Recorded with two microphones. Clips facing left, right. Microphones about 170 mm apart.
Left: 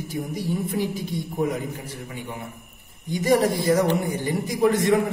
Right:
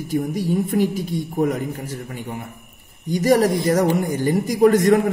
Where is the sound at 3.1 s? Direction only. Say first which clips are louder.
Right 4 dB; 40° right (ahead or behind).